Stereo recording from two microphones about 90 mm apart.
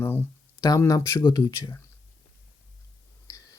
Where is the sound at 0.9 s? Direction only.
40° left (ahead or behind).